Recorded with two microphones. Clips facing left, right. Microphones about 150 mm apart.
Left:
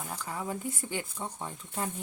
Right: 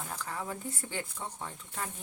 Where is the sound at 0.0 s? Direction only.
10° left (ahead or behind).